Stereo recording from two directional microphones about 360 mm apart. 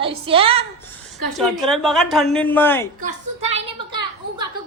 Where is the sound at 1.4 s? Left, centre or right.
Centre.